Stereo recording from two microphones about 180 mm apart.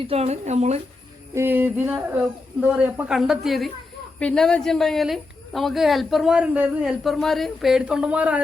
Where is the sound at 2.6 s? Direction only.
10° right (ahead or behind).